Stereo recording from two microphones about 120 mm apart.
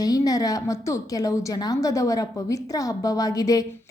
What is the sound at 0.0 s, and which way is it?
A woman's voice, 30° left (ahead or behind).